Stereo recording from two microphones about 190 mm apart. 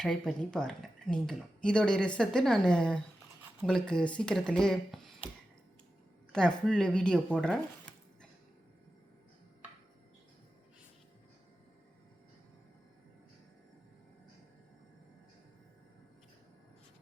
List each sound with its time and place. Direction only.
0.0 s speech: 5° left (ahead or behind)
6.3 s speech: 5° left (ahead or behind)